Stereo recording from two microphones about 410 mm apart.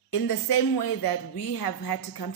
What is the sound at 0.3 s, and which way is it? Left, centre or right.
Speech, left.